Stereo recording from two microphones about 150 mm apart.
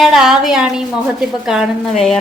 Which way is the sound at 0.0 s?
Centre (ahead or behind).